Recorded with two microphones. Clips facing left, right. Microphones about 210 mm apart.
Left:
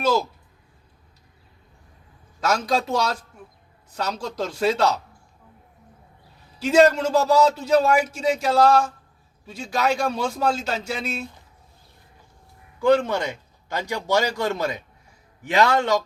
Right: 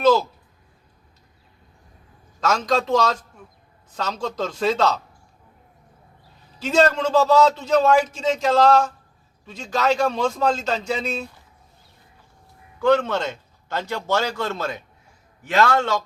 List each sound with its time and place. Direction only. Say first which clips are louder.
0.0 s speech: right 4 dB; 10° left (ahead or behind)
2.4 s a man's voice: right 1 dB; 10° left (ahead or behind)
6.6 s a man's voice: left 2 dB; 10° left (ahead or behind)
12.8 s a man's voice: even; 10° left (ahead or behind)